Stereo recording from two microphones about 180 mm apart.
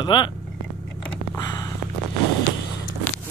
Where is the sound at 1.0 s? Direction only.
25° left (ahead or behind).